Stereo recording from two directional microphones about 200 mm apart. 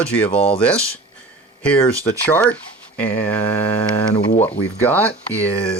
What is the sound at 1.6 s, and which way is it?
Speech, 5° left (ahead or behind).